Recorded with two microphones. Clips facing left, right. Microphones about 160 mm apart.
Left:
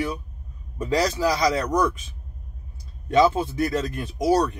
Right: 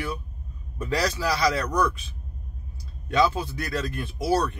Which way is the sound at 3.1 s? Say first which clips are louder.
Left 4 dB; 25° left (ahead or behind).